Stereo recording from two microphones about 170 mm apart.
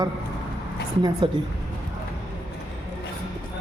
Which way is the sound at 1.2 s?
30° right (ahead or behind).